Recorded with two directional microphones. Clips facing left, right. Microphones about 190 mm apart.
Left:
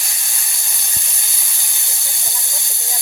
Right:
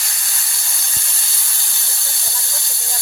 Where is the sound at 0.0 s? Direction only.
15° left (ahead or behind).